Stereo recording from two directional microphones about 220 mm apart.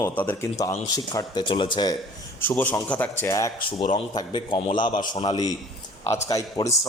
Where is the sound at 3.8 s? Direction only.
35° left (ahead or behind).